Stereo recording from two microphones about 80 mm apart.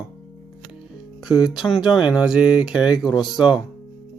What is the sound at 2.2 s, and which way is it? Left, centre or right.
Speech, centre.